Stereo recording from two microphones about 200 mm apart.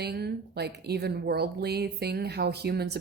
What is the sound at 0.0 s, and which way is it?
A woman's voice, 55° right (ahead or behind).